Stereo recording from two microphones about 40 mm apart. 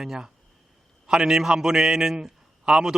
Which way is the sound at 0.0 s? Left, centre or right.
Centre.